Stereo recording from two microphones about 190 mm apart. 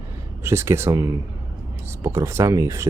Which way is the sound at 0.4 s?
15° right (ahead or behind).